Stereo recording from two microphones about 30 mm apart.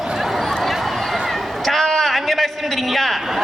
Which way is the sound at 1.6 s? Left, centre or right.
Centre.